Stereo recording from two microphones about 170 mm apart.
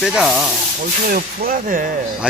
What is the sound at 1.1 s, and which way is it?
Speech, 55° right (ahead or behind).